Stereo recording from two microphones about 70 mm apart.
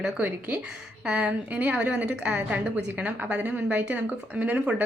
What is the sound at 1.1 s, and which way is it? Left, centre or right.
A woman's voice, centre.